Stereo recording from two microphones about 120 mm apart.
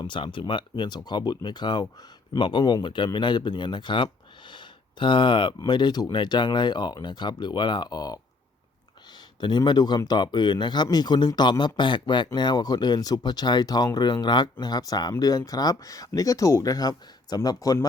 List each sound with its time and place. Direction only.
0.0 s speech: 40° left (ahead or behind)
9.4 s speech: 40° left (ahead or behind)